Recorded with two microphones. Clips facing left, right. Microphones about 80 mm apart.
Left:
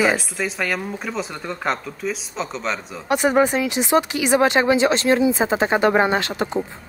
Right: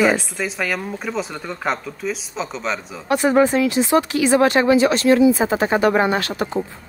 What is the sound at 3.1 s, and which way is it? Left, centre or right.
Speech, centre.